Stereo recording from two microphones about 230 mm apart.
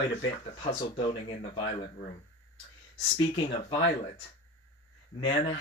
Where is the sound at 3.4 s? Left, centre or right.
Left.